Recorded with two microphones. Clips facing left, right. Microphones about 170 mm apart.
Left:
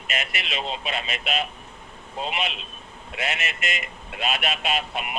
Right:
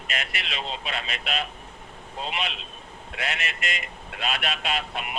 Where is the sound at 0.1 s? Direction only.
20° left (ahead or behind).